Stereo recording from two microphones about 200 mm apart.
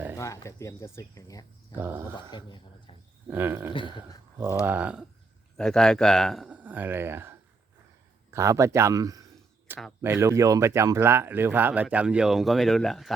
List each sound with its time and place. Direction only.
0.2 s speech: 15° left (ahead or behind)
3.2 s speech: 10° right (ahead or behind)